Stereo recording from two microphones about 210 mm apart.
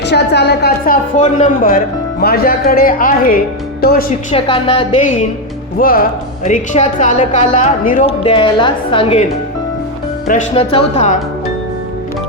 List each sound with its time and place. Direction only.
0.0 s speech: 55° left (ahead or behind)
1.2 s a woman's voice: 40° left (ahead or behind)
4.3 s a woman's voice: 25° left (ahead or behind)
5.8 s a woman's voice: 40° left (ahead or behind)
8.0 s a woman's voice: 25° left (ahead or behind)
10.5 s a woman's voice: 25° left (ahead or behind)